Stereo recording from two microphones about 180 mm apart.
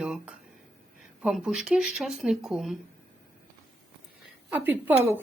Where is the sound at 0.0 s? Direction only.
5° right (ahead or behind).